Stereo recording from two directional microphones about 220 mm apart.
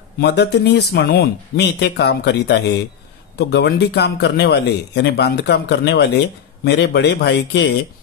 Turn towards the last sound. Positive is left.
turn(degrees=50)  # may be behind; listen again after turning